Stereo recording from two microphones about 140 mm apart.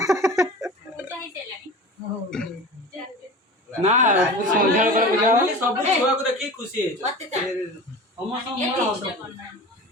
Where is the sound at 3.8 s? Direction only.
60° right (ahead or behind).